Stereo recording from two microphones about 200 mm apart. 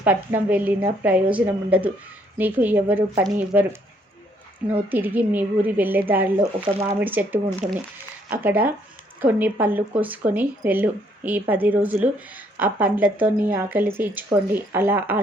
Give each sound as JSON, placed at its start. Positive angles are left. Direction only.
{"t": 0.0, "sound": "speech", "side_deg": -10}
{"t": 7.6, "sound": "speech", "side_deg": -35}
{"t": 8.3, "sound": "speech", "side_deg": -10}